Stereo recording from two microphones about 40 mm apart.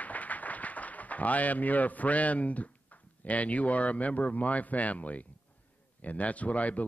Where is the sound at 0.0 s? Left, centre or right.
Left.